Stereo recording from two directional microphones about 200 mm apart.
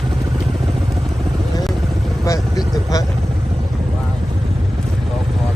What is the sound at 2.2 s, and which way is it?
Vehicle, 15° left (ahead or behind).